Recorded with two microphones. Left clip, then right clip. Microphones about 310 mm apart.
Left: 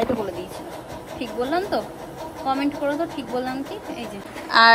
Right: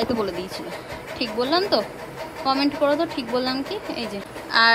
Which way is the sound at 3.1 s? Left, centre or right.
Right.